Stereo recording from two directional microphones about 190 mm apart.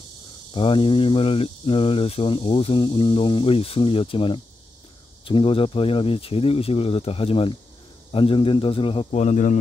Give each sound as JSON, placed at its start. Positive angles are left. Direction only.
{"t": 0.5, "sound": "speech", "side_deg": 25}